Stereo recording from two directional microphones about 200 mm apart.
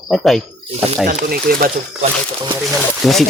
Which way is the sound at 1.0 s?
45° right (ahead or behind).